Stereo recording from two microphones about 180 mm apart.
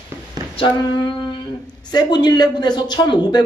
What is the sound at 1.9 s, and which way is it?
Speech, 25° left (ahead or behind).